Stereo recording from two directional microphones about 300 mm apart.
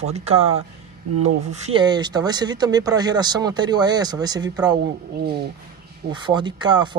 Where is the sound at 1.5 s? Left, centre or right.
Right.